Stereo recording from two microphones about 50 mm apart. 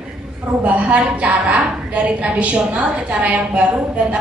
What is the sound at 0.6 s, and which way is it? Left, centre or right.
A woman's voice, right.